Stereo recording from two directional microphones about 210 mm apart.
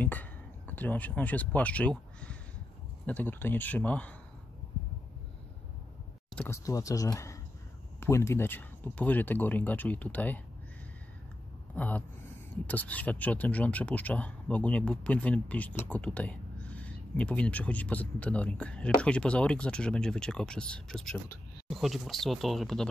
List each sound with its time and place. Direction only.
0.0 s speech: 10° left (ahead or behind)
6.3 s speech: 10° left (ahead or behind)
11.7 s speech: 5° left (ahead or behind)